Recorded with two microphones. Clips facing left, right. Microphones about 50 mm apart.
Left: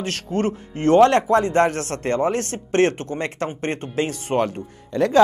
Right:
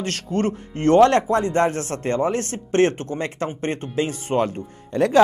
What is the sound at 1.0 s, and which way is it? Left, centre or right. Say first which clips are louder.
Speech: even; left.